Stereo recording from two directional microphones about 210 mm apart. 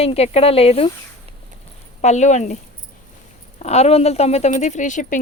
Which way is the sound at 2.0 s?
35° left (ahead or behind).